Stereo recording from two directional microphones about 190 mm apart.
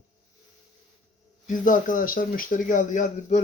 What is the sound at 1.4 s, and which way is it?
Speech, 45° left (ahead or behind).